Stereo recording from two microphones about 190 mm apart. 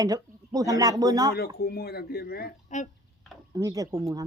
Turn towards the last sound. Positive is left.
turn(degrees=-20)  # may be behind; listen again after turning